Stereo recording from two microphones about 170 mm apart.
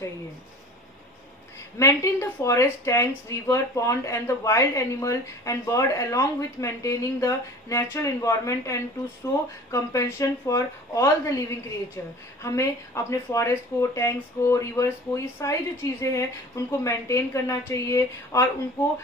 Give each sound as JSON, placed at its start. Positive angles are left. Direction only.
{"t": 1.8, "sound": "speech", "side_deg": 20}